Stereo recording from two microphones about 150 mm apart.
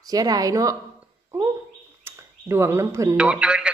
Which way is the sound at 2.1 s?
15° right (ahead or behind).